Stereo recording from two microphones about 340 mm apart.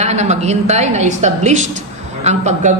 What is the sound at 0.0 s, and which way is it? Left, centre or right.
A man's voice, centre.